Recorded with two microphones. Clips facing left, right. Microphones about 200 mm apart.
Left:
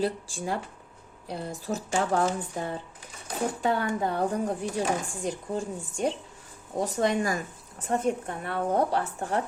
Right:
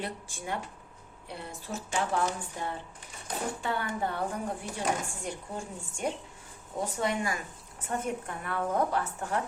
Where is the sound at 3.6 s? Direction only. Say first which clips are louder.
Left 7 dB; 40° left (ahead or behind).